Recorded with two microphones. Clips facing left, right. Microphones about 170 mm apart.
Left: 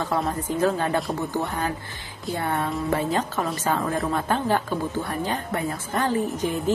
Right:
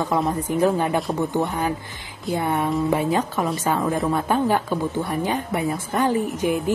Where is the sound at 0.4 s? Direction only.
15° right (ahead or behind).